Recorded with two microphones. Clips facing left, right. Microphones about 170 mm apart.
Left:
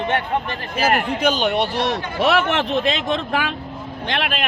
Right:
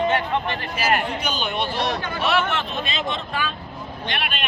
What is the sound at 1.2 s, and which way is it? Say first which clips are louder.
Speech: left 7 dB; 85° left.